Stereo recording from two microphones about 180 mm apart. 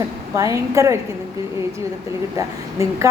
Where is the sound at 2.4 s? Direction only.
20° right (ahead or behind).